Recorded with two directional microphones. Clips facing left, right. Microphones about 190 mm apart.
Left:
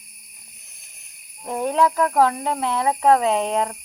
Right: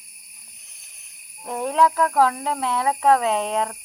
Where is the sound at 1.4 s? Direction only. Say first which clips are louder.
Left 1 dB; centre (ahead or behind).